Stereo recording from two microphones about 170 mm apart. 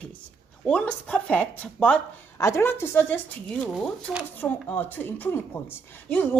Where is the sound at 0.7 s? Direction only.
5° left (ahead or behind).